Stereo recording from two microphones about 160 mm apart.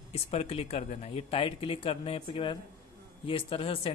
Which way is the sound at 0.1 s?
40° left (ahead or behind).